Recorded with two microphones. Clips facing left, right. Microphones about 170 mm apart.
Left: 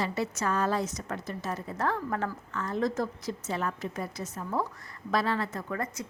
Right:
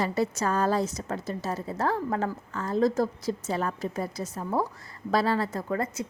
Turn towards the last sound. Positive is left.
turn(degrees=-30)  # may be behind; listen again after turning